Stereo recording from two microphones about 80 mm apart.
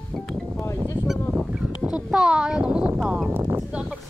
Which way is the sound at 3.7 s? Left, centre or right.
Centre.